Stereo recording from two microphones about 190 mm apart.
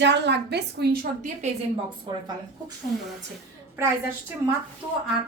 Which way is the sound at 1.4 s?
35° right (ahead or behind).